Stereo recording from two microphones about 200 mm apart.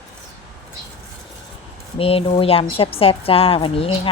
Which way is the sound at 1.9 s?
30° left (ahead or behind).